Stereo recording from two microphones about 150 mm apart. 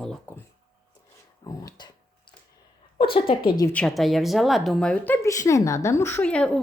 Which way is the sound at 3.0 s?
40° left (ahead or behind).